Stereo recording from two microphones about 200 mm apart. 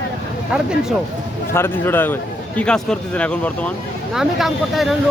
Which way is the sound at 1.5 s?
10° left (ahead or behind).